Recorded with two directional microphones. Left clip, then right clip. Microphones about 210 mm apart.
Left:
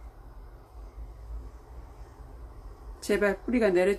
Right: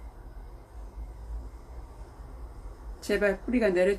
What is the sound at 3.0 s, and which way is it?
Speech, 5° left (ahead or behind).